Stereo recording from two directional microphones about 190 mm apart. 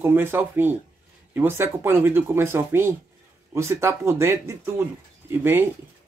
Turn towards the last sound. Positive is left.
turn(degrees=-10)  # may be behind; listen again after turning